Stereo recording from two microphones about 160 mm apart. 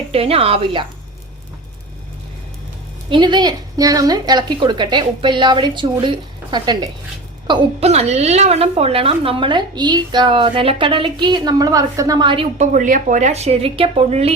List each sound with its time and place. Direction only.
0.1 s a woman's voice: 35° right (ahead or behind)
3.1 s a woman's voice: 30° right (ahead or behind)
7.9 s a woman's voice: 45° right (ahead or behind)
12.5 s a woman's voice: 50° right (ahead or behind)